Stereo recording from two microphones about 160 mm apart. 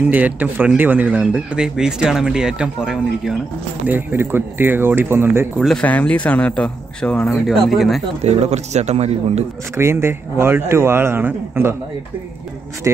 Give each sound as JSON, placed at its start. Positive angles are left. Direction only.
{"t": 0.1, "sound": "a man's voice", "side_deg": -10}
{"t": 5.6, "sound": "speech", "side_deg": 5}
{"t": 8.2, "sound": "speech", "side_deg": -40}
{"t": 9.8, "sound": "a man's voice", "side_deg": -15}
{"t": 12.9, "sound": "a man's voice", "side_deg": -15}